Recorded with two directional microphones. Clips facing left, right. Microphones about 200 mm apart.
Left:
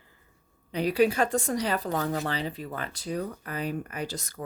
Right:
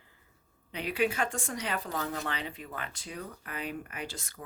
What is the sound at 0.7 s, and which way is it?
Speech, 40° left (ahead or behind).